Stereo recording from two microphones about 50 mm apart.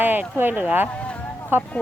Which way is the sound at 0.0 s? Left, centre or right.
Right.